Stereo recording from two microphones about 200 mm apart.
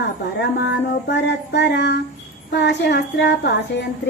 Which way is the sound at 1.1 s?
60° left (ahead or behind).